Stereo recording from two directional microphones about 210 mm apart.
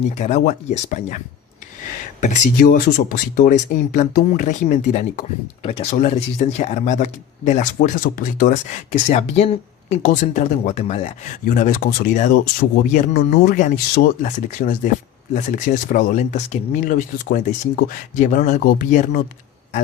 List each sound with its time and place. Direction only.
0.2 s speech: 35° left (ahead or behind)
2.2 s speech: 40° left (ahead or behind)